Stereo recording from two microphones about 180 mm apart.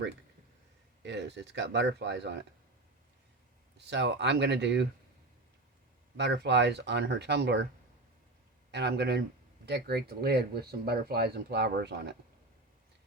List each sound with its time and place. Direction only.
1.0 s speech: 75° right (ahead or behind)
3.8 s speech: 70° right (ahead or behind)
6.1 s speech: 70° right (ahead or behind)
8.7 s speech: 70° right (ahead or behind)